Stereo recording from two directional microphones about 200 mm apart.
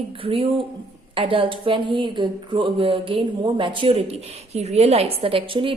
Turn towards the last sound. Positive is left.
turn(degrees=-25)  # may be behind; listen again after turning